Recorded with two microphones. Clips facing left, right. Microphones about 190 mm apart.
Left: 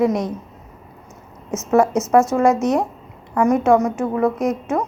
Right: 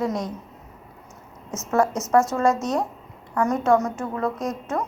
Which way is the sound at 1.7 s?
20° left (ahead or behind).